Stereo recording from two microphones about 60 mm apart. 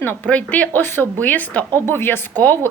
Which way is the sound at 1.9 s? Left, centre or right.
Left.